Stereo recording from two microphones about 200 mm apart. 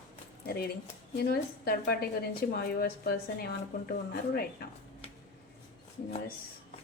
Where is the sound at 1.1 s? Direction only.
50° left (ahead or behind).